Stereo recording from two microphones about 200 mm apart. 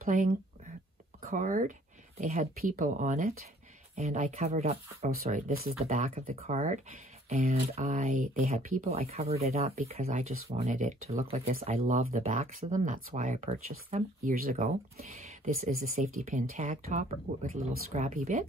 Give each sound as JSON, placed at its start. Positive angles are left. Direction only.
{"t": 0.0, "sound": "speech", "side_deg": -40}
{"t": 1.3, "sound": "speech", "side_deg": -40}
{"t": 5.2, "sound": "speech", "side_deg": -45}
{"t": 9.1, "sound": "speech", "side_deg": -30}
{"t": 16.0, "sound": "speech", "side_deg": -40}